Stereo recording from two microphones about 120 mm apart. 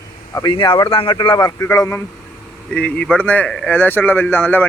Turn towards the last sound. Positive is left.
turn(degrees=15)  # may be behind; listen again after turning